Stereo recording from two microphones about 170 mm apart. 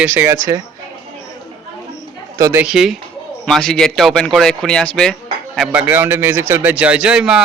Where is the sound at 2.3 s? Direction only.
20° right (ahead or behind).